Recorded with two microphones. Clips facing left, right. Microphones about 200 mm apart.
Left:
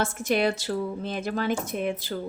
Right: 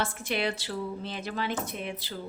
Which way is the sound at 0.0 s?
45° left (ahead or behind).